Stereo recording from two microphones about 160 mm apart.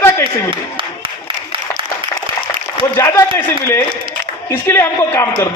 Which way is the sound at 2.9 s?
15° left (ahead or behind).